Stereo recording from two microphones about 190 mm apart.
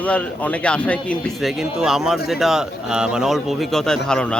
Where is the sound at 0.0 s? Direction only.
5° left (ahead or behind).